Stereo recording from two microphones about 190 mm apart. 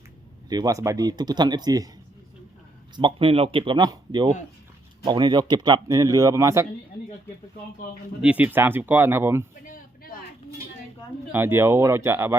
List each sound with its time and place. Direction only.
0.5 s speech: 20° right (ahead or behind)
2.9 s speech: 25° right (ahead or behind)
8.2 s speech: 5° right (ahead or behind)
9.6 s a sound: 50° left (ahead or behind)
11.3 s speech: 10° right (ahead or behind)